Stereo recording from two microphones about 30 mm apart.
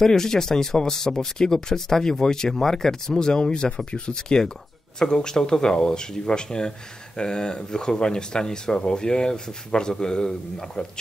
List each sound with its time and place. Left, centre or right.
0.0 s speech: centre